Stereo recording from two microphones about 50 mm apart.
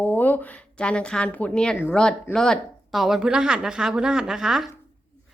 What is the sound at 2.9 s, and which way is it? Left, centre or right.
A woman's voice, centre.